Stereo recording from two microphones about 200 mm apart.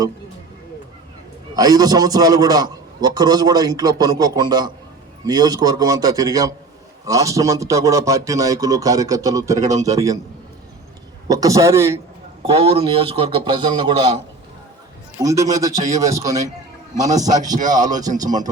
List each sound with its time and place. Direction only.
1.5 s a man's voice: 20° right (ahead or behind)
11.3 s a man's voice: 15° right (ahead or behind)
12.4 s a man's voice: 30° right (ahead or behind)
15.2 s a man's voice: 15° right (ahead or behind)